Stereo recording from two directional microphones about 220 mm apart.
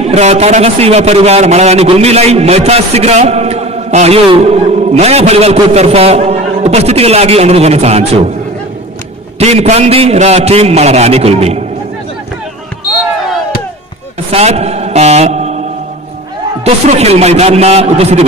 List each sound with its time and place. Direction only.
0.0 s a man's voice: 30° right (ahead or behind)
9.4 s a man's voice: 30° right (ahead or behind)
14.3 s a man's voice: 30° right (ahead or behind)
16.6 s a man's voice: 30° right (ahead or behind)